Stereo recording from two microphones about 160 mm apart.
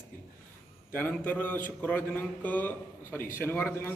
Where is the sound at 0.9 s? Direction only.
10° left (ahead or behind).